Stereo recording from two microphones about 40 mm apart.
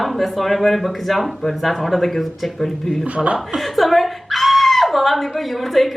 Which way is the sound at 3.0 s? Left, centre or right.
Right.